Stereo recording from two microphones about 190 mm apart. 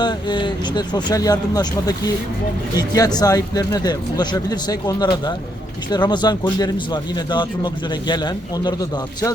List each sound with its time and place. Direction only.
0.0 s speech: 25° left (ahead or behind)